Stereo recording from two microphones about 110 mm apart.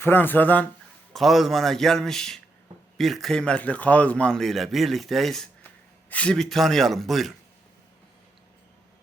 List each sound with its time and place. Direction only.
0.0 s speech: 20° left (ahead or behind)
1.1 s a man's voice: centre (ahead or behind)